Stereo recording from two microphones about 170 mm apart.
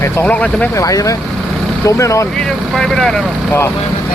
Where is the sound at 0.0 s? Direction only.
10° left (ahead or behind).